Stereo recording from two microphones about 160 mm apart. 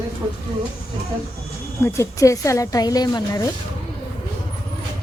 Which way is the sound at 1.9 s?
20° left (ahead or behind).